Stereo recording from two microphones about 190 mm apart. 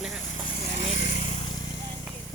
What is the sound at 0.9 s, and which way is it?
Vehicle, 45° left (ahead or behind).